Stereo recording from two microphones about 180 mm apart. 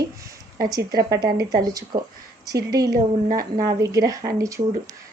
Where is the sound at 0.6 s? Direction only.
20° right (ahead or behind).